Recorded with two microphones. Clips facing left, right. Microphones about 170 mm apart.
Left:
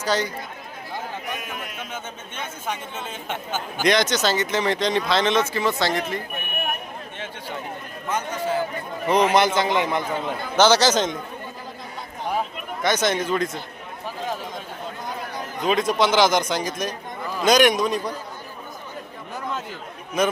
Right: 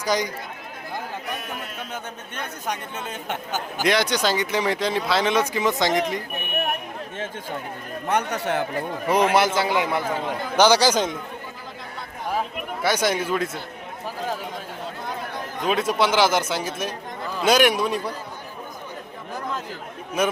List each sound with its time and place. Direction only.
0.0 s speech: 10° right (ahead or behind)
3.8 s speech: 10° right (ahead or behind)
8.0 s a man's voice: 65° right (ahead or behind)
9.0 s speech: 10° right (ahead or behind)
12.8 s speech: 10° right (ahead or behind)
15.6 s speech: 5° right (ahead or behind)
20.2 s speech: 5° right (ahead or behind)